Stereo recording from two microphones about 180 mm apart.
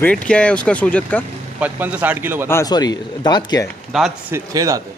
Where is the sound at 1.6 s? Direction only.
10° right (ahead or behind).